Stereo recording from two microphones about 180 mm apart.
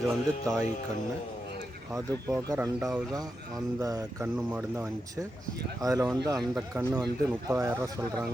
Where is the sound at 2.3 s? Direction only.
20° right (ahead or behind).